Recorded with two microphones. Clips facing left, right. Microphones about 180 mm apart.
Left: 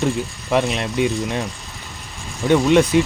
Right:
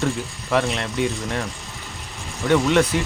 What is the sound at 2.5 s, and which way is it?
Speech, 15° left (ahead or behind).